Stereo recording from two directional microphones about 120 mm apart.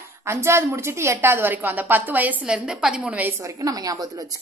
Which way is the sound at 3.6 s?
30° right (ahead or behind).